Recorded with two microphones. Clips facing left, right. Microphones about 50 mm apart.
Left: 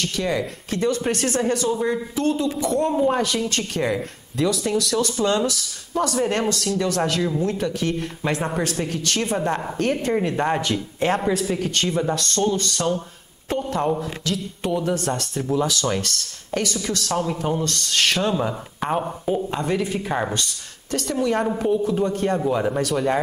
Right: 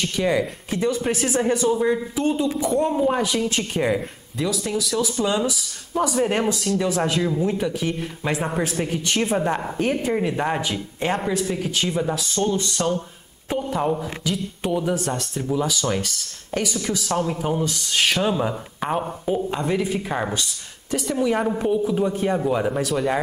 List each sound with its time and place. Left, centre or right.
0.0 s speech: centre